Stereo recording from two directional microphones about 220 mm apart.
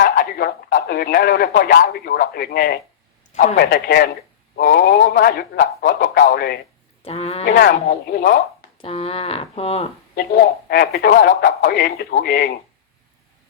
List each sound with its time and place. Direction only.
0.0 s a man's voice: 40° left (ahead or behind)
3.6 s a man's voice: 50° left (ahead or behind)
7.0 s speech: 25° left (ahead or behind)
7.4 s a man's voice: 45° left (ahead or behind)
8.8 s speech: 25° left (ahead or behind)
10.2 s speech: 45° left (ahead or behind)